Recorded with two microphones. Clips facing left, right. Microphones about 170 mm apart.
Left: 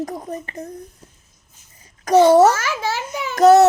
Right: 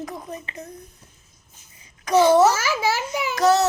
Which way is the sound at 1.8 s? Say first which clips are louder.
Left 4 dB; 45° left (ahead or behind).